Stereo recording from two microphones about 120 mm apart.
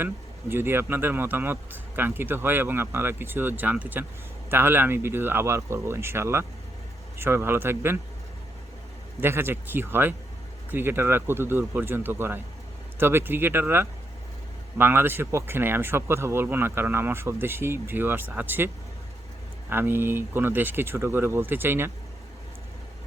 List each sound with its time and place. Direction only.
0.0 s speech: 20° right (ahead or behind)
9.2 s speech: 20° right (ahead or behind)
19.7 s speech: 20° right (ahead or behind)